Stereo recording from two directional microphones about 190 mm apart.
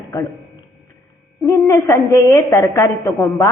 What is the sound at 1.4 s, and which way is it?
A woman's voice, 15° left (ahead or behind).